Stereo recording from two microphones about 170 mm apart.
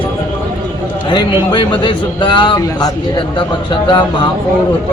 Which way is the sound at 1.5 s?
25° left (ahead or behind).